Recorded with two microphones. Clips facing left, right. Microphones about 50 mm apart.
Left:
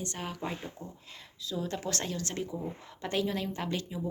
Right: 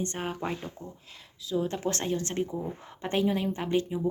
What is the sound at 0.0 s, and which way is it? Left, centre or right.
Speech, right.